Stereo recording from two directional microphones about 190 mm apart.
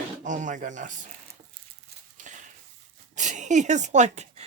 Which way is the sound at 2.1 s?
40° right (ahead or behind).